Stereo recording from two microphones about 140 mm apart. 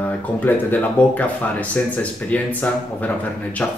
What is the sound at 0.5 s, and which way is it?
Speech, 15° left (ahead or behind).